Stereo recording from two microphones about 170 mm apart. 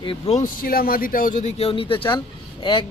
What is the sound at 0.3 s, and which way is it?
A man's voice, 55° left (ahead or behind).